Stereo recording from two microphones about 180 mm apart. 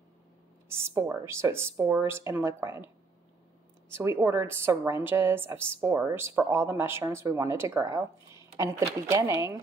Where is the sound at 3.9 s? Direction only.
15° right (ahead or behind).